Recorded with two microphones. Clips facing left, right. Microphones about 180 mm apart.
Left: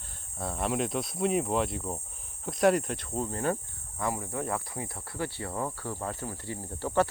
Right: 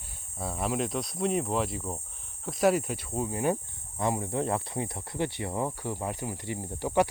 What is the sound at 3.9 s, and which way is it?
Speech, 25° right (ahead or behind).